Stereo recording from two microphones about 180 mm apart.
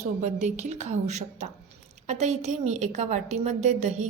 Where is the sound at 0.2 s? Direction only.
40° right (ahead or behind).